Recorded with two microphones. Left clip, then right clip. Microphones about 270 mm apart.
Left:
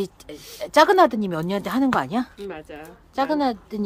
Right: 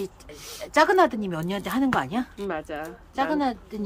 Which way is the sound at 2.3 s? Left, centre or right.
Centre.